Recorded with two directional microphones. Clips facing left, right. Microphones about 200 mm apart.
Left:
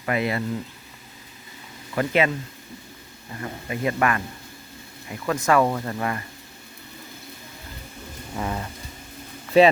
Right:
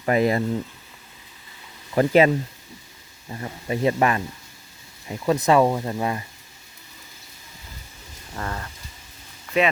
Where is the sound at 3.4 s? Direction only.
25° right (ahead or behind).